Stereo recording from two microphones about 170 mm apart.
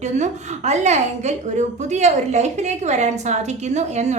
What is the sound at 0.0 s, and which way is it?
A woman's voice, 45° right (ahead or behind).